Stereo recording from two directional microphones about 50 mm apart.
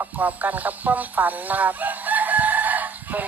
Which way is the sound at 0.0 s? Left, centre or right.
Right.